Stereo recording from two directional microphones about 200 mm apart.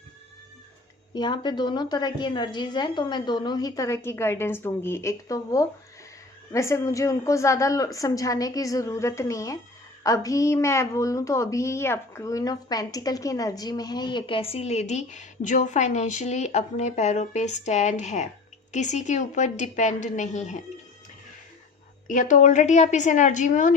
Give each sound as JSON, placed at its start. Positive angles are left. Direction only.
{"t": 1.1, "sound": "a woman's voice", "side_deg": 20}
{"t": 22.0, "sound": "a woman's voice", "side_deg": 40}